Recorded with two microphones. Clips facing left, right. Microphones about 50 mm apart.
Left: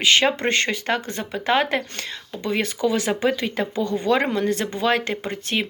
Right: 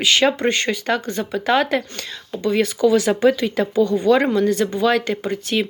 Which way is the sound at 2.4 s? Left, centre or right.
Left.